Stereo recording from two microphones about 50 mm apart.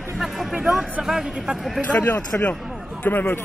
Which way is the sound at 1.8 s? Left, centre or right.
Left.